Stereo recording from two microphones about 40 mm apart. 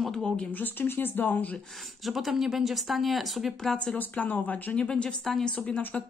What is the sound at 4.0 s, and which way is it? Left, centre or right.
Speech, left.